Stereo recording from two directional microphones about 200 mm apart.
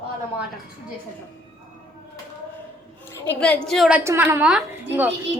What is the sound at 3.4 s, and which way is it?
A woman's voice, 5° left (ahead or behind).